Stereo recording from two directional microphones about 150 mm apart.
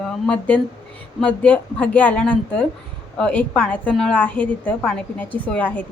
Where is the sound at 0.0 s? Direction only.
10° left (ahead or behind).